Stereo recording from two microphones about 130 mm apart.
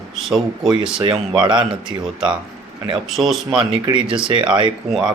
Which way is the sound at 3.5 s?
40° right (ahead or behind).